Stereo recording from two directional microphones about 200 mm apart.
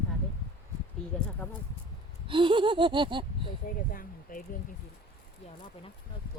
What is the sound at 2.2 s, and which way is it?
Laughter, 25° right (ahead or behind).